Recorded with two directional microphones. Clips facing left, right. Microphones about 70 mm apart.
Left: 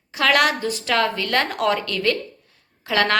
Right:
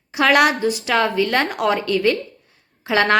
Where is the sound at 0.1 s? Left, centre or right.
Centre.